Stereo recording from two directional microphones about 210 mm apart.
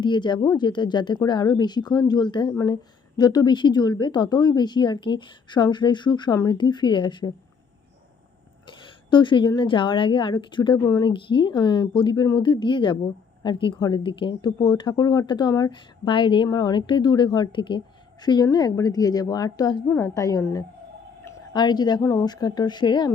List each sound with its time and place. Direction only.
0.0 s a woman's voice: 20° left (ahead or behind)
8.6 s a woman's voice: 25° left (ahead or behind)